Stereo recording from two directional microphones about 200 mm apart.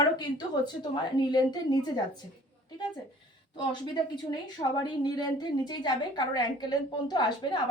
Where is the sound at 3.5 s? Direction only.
20° left (ahead or behind).